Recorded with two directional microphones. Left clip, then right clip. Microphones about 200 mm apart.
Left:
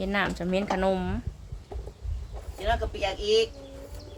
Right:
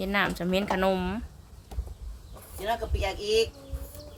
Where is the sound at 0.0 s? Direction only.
10° right (ahead or behind).